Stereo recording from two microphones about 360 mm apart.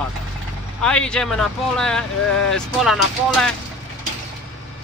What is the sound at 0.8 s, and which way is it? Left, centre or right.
Speech, centre.